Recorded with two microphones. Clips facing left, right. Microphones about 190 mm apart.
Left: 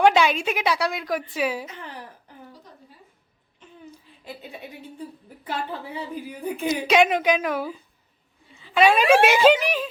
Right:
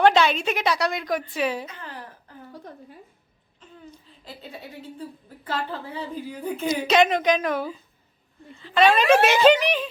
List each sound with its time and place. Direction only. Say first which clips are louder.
0.0 s a woman's voice: even; 10° left (ahead or behind)
2.5 s a sound: right 6 dB; 55° right (ahead or behind)
5.5 s a woman's voice: even; 10° left (ahead or behind)